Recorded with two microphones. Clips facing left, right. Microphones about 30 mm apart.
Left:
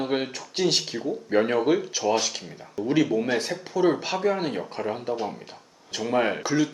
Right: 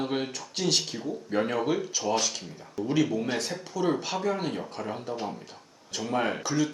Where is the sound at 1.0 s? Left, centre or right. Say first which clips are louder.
Left 5 dB; centre.